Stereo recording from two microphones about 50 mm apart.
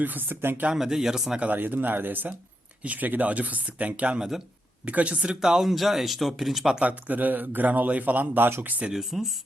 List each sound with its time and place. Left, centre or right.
0.0 s a man's voice: right
0.7 s speech: centre
1.4 s a man's voice: right
4.2 s speech: centre
4.9 s speech: right; by 6.7 s centre
7.1 s a man's voice: right
8.9 s speech: centre